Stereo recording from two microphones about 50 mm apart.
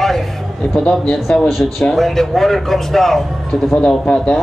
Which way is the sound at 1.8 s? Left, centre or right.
Centre.